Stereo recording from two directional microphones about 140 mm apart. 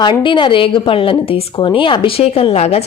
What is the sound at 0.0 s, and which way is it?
A woman's voice, 35° left (ahead or behind).